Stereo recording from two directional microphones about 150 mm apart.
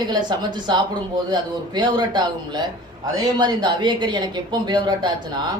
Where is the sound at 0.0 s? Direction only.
30° right (ahead or behind).